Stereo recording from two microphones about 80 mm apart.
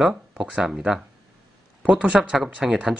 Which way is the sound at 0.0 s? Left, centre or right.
Centre.